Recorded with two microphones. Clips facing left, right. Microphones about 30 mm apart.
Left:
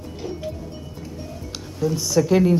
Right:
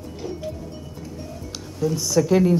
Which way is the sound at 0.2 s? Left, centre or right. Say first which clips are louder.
Left 1 dB; centre.